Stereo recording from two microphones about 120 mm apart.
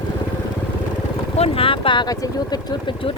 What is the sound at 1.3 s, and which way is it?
Speech, 55° left (ahead or behind).